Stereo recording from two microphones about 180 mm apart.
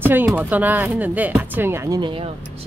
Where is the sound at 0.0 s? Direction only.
10° right (ahead or behind).